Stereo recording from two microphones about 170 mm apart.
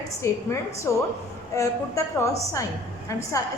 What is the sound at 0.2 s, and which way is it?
A woman's voice, 15° left (ahead or behind).